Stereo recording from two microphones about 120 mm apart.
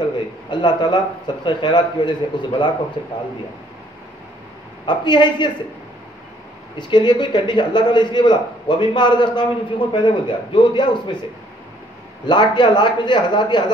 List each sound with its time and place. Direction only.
0.5 s a man's voice: 40° left (ahead or behind)
4.8 s a man's voice: 40° left (ahead or behind)
6.8 s a man's voice: 40° left (ahead or behind)
12.3 s a man's voice: 40° left (ahead or behind)